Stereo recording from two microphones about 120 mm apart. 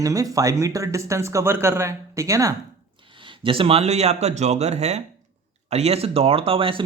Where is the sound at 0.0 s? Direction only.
30° right (ahead or behind).